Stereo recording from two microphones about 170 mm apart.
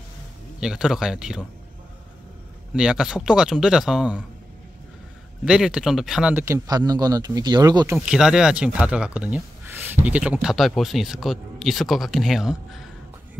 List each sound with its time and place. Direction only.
0.6 s speech: 5° right (ahead or behind)
2.7 s speech: 5° right (ahead or behind)
5.4 s speech: 5° right (ahead or behind)
6.4 s speech: 20° right (ahead or behind)
8.0 s speech: 5° right (ahead or behind)